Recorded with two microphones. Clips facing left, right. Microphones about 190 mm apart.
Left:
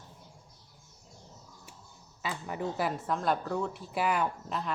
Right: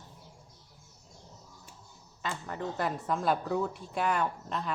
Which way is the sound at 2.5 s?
10° left (ahead or behind).